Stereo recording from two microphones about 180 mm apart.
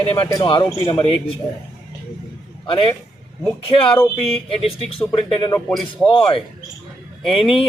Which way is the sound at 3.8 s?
10° left (ahead or behind).